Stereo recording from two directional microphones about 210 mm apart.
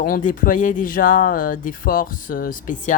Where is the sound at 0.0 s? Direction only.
40° left (ahead or behind).